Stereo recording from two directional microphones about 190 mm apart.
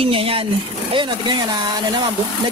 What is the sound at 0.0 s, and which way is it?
Speech, 30° right (ahead or behind).